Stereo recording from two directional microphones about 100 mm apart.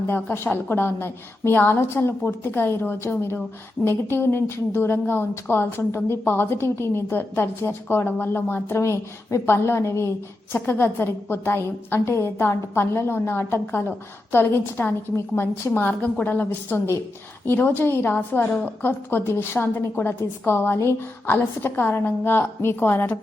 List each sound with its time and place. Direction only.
0.1 s a woman's voice: 20° left (ahead or behind)